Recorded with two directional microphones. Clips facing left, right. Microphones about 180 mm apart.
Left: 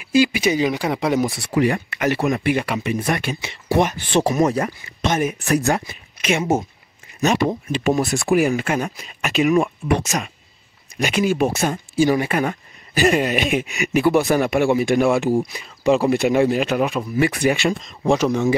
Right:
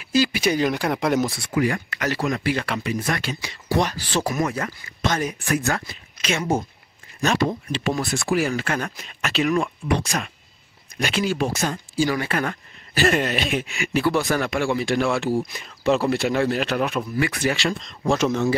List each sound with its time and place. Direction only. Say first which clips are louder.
0.2 s speech: left 3 dB; 5° left (ahead or behind)
1.5 s speech: left 5 dB; 25° left (ahead or behind)
4.4 s speech: left 6 dB; 40° left (ahead or behind)
4.6 s speech: left 3 dB; 20° left (ahead or behind)
11.1 s speech: left 4 dB; 15° left (ahead or behind)